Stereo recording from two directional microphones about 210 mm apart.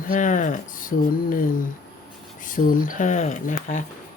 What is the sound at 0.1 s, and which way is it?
Speech, 40° left (ahead or behind).